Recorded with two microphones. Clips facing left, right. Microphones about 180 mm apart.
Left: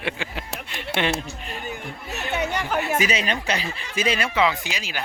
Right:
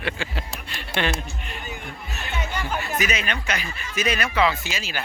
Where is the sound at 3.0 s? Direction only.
30° left (ahead or behind); by 5.0 s 15° left (ahead or behind).